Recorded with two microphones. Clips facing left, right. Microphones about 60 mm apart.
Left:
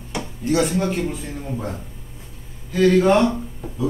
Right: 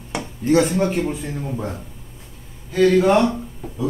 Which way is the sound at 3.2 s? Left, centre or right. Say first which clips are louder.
Even; centre.